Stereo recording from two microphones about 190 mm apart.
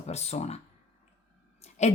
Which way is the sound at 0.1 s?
35° left (ahead or behind).